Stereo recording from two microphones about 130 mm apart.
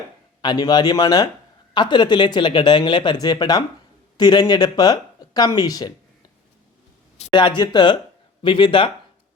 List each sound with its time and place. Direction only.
0.4 s speech: 30° left (ahead or behind)
7.3 s speech: 40° left (ahead or behind)